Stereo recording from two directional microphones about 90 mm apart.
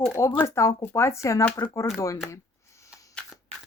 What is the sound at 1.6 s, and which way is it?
Speech, 50° left (ahead or behind).